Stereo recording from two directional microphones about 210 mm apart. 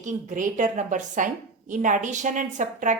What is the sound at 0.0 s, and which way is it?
Speech, 35° right (ahead or behind).